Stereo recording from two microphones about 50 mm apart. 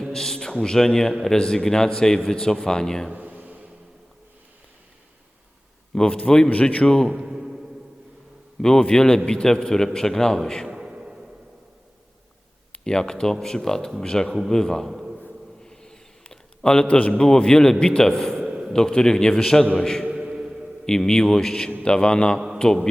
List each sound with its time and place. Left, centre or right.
0.1 s a man's voice: centre
3.1 s a sound: right
5.9 s a man's voice: centre
6.5 s a man's voice: left
6.8 s a man's voice: centre
7.1 s a man's voice: centre
7.3 s music: centre
8.6 s a man's voice: centre
10.7 s a sound: centre
12.8 s a man's voice: centre
14.8 s a sound: centre
15.6 s a man's voice: centre
20.1 s a sound: centre
20.8 s a man's voice: centre